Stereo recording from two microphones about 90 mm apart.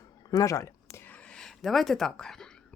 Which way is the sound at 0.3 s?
40° left (ahead or behind).